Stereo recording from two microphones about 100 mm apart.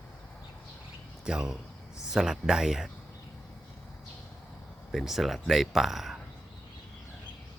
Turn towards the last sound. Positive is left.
turn(degrees=0)  # may be behind; listen again after turning